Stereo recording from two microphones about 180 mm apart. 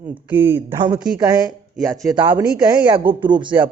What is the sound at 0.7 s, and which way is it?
Speech, 25° right (ahead or behind).